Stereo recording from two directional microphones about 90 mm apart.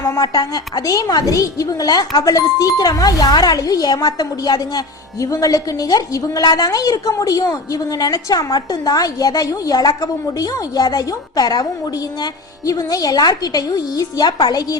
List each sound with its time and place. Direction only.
0.2 s a woman's voice: 50° left (ahead or behind)
5.2 s a woman's voice: 40° left (ahead or behind)